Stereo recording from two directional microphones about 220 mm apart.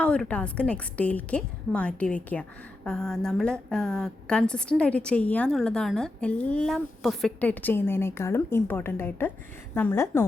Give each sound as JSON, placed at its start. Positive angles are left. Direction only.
{"t": 0.0, "sound": "a woman's voice", "side_deg": 5}